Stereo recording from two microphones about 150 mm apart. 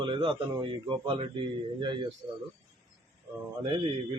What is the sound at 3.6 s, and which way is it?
Speech, 35° right (ahead or behind).